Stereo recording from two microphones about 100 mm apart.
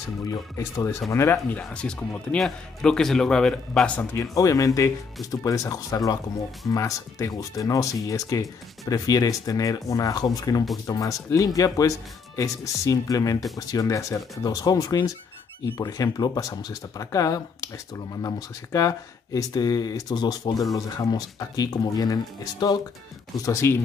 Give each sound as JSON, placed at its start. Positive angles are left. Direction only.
{"t": 0.2, "sound": "speech", "side_deg": 35}
{"t": 1.6, "sound": "speech", "side_deg": 10}
{"t": 4.0, "sound": "speech", "side_deg": 30}
{"t": 23.4, "sound": "speech", "side_deg": 30}